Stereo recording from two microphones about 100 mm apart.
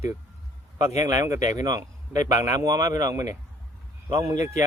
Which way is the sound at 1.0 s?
30° right (ahead or behind).